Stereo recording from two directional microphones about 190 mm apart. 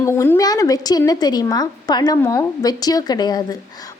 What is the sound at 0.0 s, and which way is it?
A woman's voice, 15° left (ahead or behind).